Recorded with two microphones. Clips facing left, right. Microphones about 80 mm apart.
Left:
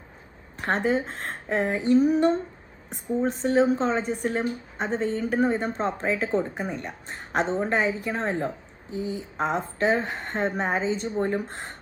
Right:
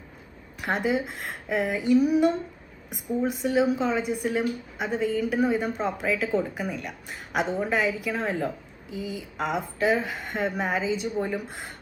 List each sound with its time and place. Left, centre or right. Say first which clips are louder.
0.5 s a woman's voice: left 2 dB; left
3.4 s a woman's voice: left 2 dB; left
8.9 s speech: left 3 dB; right
9.4 s a woman's voice: left 1 dB; left